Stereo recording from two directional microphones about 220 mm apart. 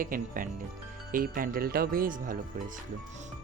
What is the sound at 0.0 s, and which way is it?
Speech, 40° right (ahead or behind).